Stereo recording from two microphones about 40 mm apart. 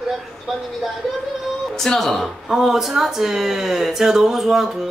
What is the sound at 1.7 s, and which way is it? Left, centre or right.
Speech, centre.